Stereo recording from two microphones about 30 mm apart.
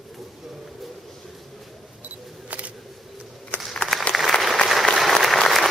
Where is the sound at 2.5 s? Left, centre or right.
Right.